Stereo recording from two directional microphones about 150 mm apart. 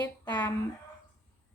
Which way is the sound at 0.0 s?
25° left (ahead or behind).